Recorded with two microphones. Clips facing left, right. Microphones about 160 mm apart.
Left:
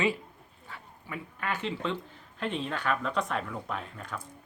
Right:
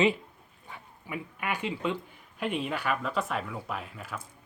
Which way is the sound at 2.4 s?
10° right (ahead or behind).